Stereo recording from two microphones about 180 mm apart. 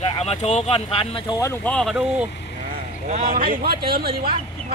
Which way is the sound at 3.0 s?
45° right (ahead or behind).